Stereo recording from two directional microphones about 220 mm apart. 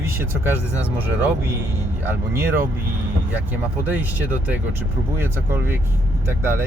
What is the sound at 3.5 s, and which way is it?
Speech, 10° right (ahead or behind).